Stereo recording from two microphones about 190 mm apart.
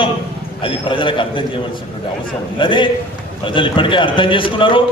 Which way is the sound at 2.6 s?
25° left (ahead or behind).